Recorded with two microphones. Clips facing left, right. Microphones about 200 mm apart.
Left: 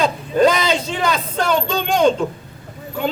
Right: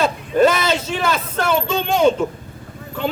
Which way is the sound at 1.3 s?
5° right (ahead or behind).